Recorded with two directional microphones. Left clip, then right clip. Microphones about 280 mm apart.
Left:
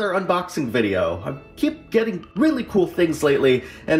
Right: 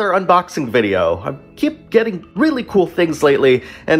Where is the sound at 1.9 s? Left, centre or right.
Centre.